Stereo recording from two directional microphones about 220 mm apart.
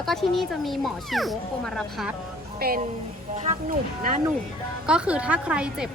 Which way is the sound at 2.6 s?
45° right (ahead or behind).